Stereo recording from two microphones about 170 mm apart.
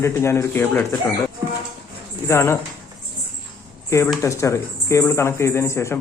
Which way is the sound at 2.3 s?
15° left (ahead or behind).